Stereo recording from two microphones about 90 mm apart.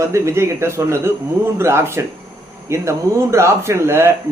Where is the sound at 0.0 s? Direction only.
30° right (ahead or behind).